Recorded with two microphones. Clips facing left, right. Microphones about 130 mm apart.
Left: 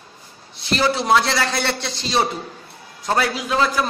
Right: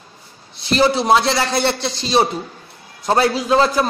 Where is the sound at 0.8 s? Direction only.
25° right (ahead or behind).